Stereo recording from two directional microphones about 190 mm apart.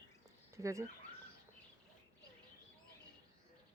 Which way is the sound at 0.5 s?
15° right (ahead or behind).